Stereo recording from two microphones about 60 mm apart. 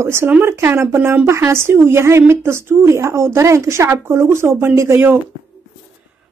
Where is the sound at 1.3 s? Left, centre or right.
Right.